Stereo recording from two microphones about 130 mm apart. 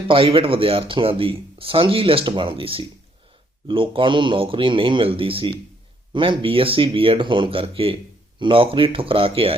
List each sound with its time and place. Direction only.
0.1 s speech: 45° right (ahead or behind)